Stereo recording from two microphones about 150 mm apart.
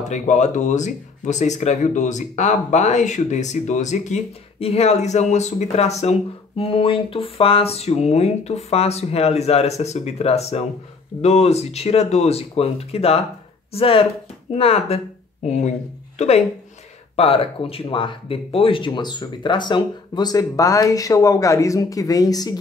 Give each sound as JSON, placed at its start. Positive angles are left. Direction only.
{"t": 0.0, "sound": "speech", "side_deg": 50}
{"t": 17.1, "sound": "speech", "side_deg": 40}